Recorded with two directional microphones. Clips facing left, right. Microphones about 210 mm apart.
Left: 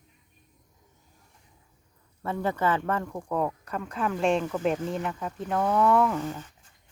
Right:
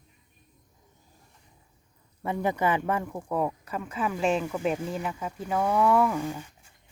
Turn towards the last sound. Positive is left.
turn(degrees=-10)  # may be behind; listen again after turning